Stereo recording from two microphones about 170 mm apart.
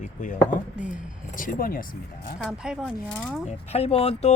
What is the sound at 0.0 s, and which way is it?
Speech, 50° left (ahead or behind).